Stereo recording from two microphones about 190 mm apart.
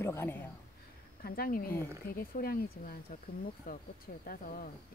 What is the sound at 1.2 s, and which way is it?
Speech, 50° left (ahead or behind).